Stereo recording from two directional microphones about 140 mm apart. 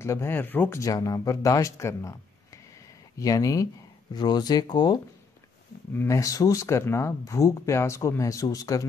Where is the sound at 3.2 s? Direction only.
25° left (ahead or behind).